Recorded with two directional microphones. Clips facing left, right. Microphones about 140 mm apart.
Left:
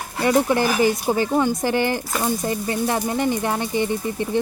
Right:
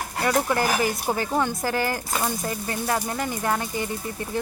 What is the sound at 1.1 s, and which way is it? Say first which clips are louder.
Speech: left 5 dB; 20° left (ahead or behind).